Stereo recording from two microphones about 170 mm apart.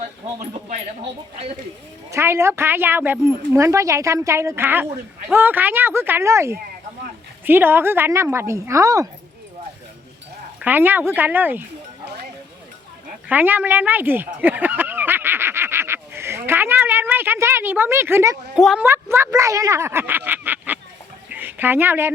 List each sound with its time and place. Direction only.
2.0 s speech: 15° right (ahead or behind)
10.6 s speech: 10° right (ahead or behind)
13.2 s speech: 10° right (ahead or behind)
14.4 s a sound: 10° right (ahead or behind)
18.5 s a woman's voice: 5° right (ahead or behind)
18.9 s speech: 15° right (ahead or behind)
21.2 s a sound: 10° right (ahead or behind)